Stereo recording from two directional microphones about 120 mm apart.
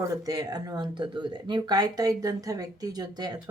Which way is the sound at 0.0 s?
30° right (ahead or behind).